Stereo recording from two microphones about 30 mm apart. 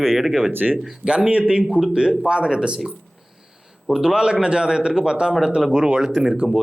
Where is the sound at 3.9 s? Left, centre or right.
Right.